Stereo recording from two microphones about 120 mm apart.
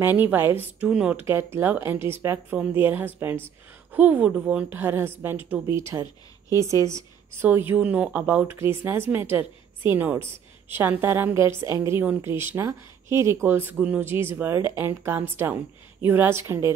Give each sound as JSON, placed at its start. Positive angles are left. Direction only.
{"t": 0.0, "sound": "speech", "side_deg": -15}
{"t": 1.2, "sound": "a woman's voice", "side_deg": -20}